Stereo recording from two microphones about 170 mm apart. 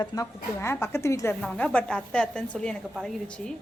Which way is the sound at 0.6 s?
15° left (ahead or behind).